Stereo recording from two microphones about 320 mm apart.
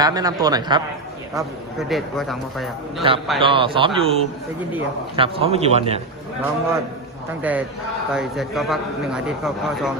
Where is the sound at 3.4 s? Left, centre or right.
Centre.